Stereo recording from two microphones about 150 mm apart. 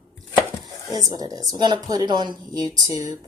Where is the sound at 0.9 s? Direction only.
25° right (ahead or behind).